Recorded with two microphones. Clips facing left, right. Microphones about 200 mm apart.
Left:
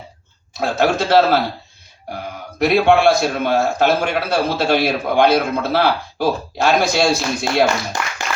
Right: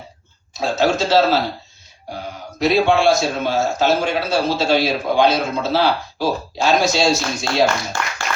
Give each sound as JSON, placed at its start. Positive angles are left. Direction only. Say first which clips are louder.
{"t": 0.5, "sound": "a man's voice", "louder": "left 1 dB", "side_deg": 55}
{"t": 2.6, "sound": "a man's voice", "louder": "left 2 dB", "side_deg": 60}